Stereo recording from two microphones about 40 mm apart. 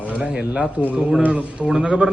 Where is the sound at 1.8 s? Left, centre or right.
Right.